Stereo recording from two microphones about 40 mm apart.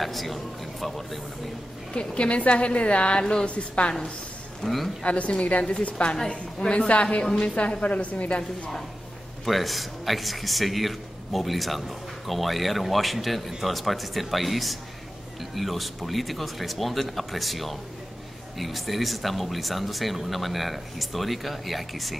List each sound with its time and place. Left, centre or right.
0.0 s speech: centre
2.0 s a woman's voice: left
4.6 s speech: centre
5.0 s a woman's voice: left
6.1 s a woman's voice: centre
6.9 s a woman's voice: left
9.4 s speech: centre